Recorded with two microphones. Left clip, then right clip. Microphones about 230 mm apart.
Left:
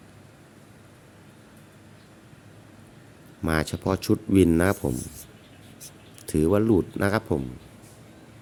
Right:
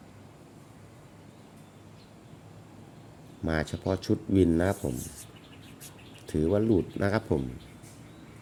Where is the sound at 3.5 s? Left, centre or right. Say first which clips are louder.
Left 4 dB; left.